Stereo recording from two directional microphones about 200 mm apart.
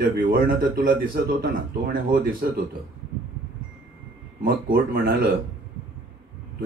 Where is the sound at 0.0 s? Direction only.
45° right (ahead or behind).